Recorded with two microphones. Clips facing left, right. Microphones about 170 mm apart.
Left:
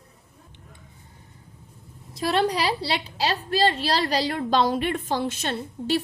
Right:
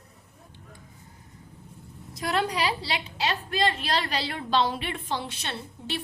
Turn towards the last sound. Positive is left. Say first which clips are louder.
# left 9 dB
turn(degrees=45)  # may be behind; listen again after turning